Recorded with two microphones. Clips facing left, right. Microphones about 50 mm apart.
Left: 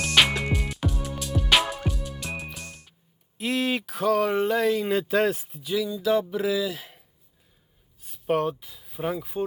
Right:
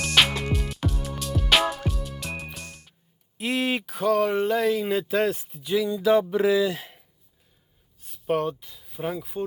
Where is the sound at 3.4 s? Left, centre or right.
Centre.